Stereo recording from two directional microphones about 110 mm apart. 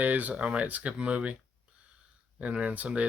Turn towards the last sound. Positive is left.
turn(degrees=-15)  # may be behind; listen again after turning